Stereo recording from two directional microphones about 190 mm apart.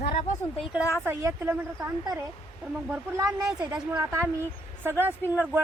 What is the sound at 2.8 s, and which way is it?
Speech, 10° right (ahead or behind).